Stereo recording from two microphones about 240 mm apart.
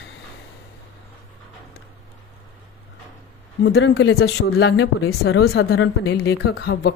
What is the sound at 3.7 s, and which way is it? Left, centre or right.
Speech, left.